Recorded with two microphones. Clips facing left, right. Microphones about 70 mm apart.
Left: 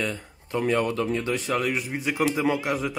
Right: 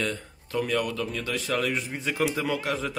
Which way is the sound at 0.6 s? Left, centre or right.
Left.